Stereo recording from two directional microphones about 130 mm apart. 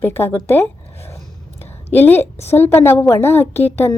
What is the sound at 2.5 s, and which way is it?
A woman's voice, 15° left (ahead or behind).